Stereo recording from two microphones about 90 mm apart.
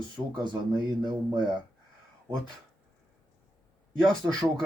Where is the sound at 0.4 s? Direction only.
55° right (ahead or behind).